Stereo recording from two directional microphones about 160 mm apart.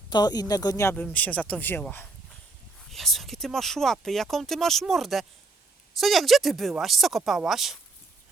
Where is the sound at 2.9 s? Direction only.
Centre (ahead or behind).